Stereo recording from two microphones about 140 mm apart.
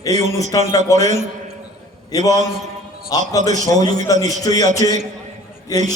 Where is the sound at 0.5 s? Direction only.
30° left (ahead or behind).